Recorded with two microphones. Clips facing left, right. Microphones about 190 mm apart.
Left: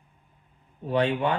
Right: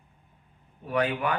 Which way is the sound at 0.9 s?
30° left (ahead or behind).